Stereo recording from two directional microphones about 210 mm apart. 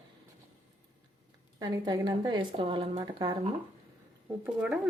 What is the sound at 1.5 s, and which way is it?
Speech, 20° right (ahead or behind).